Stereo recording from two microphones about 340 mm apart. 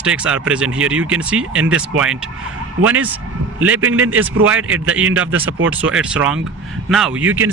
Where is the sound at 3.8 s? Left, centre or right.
Right.